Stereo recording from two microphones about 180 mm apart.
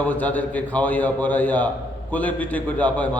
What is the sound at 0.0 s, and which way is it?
A man's voice, 10° left (ahead or behind).